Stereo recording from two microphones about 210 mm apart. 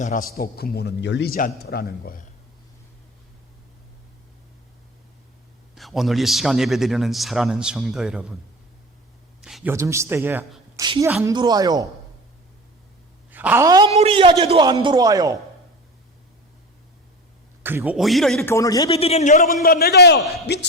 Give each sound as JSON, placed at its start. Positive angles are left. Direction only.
{"t": 0.0, "sound": "a man's voice", "side_deg": 40}
{"t": 5.7, "sound": "a man's voice", "side_deg": 0}
{"t": 9.4, "sound": "a sound", "side_deg": 0}
{"t": 9.7, "sound": "a man's voice", "side_deg": -15}
{"t": 10.8, "sound": "a man's voice", "side_deg": -20}
{"t": 13.3, "sound": "speech", "side_deg": -10}
{"t": 13.9, "sound": "a man's voice", "side_deg": -30}
{"t": 17.6, "sound": "a man's voice", "side_deg": -10}
{"t": 18.5, "sound": "a man's voice", "side_deg": 15}